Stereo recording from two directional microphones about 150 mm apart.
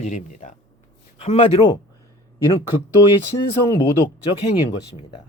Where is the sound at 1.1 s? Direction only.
45° left (ahead or behind).